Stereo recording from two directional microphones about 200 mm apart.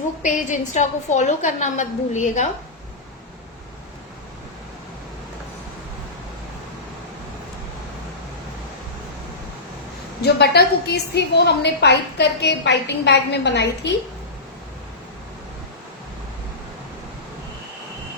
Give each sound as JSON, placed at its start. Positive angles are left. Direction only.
{"t": 0.2, "sound": "a woman's voice", "side_deg": 40}
{"t": 10.2, "sound": "a woman's voice", "side_deg": 55}